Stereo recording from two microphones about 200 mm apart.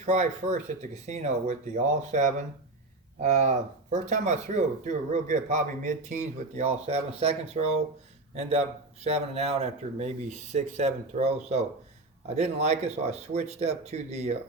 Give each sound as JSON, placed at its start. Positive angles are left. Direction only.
{"t": 0.0, "sound": "speech", "side_deg": -35}